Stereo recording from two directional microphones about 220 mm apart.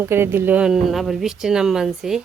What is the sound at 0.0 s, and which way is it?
Speech, 10° right (ahead or behind).